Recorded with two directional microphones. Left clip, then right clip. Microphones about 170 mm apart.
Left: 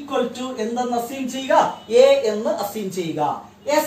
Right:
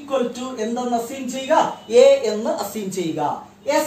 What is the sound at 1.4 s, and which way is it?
A woman's voice, 25° right (ahead or behind).